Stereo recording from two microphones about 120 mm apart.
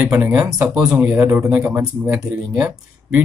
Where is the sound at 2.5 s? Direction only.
30° right (ahead or behind).